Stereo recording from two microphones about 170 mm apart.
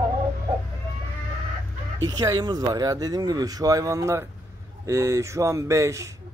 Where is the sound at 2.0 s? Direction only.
20° right (ahead or behind).